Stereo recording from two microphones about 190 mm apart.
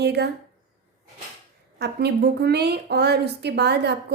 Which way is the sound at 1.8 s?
60° right (ahead or behind).